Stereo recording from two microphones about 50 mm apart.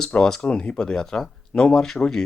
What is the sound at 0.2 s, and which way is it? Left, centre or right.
Speech, centre.